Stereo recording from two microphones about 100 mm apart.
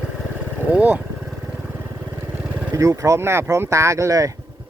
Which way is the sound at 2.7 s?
35° right (ahead or behind).